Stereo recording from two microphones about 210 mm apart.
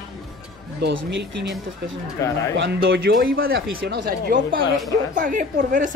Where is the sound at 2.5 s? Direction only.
55° right (ahead or behind).